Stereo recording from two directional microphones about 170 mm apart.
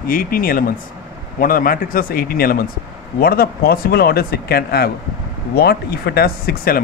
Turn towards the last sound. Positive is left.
turn(degrees=65)  # may be behind; listen again after turning